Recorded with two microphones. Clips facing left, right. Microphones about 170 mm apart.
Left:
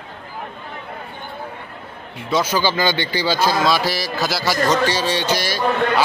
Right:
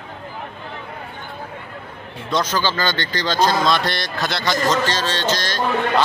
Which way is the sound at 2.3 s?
5° left (ahead or behind).